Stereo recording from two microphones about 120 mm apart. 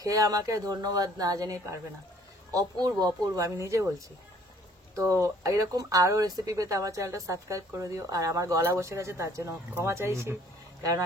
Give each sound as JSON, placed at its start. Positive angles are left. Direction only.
{"t": 0.0, "sound": "speech", "side_deg": -30}
{"t": 4.9, "sound": "speech", "side_deg": -25}